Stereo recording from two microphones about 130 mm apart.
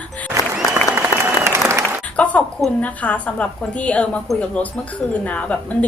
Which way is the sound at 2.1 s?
10° left (ahead or behind).